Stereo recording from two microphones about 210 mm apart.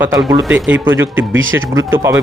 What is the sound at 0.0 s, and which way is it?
Speech, 15° right (ahead or behind).